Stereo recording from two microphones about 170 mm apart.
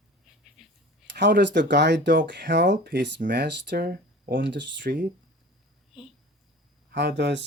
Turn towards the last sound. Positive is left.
turn(degrees=-90)